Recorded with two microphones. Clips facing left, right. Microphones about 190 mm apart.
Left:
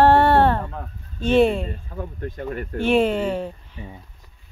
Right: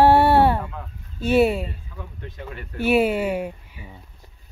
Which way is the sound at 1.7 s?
45° left (ahead or behind).